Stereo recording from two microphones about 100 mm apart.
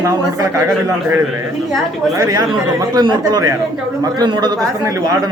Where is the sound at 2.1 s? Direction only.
40° right (ahead or behind).